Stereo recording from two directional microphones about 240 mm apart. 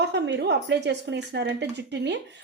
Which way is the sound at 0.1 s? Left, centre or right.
Right.